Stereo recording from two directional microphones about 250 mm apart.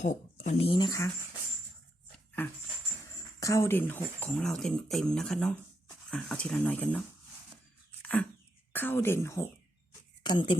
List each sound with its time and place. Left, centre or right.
0.0 s speech: left; by 1.1 s centre
2.1 s dog: centre
3.4 s speech: centre
8.7 s speech: centre